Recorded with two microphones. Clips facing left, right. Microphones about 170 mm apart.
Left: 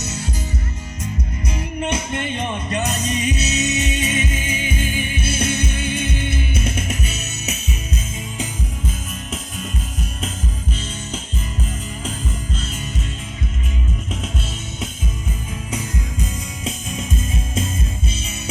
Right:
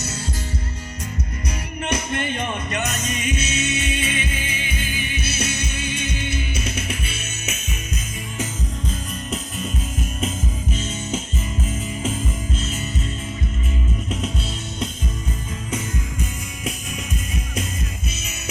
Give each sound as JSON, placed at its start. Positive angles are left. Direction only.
{"t": 1.5, "sound": "music", "side_deg": 25}
{"t": 8.9, "sound": "music", "side_deg": 0}